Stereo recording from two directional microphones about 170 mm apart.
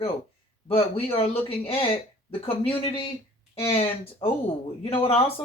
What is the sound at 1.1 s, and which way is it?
Speech, 35° left (ahead or behind).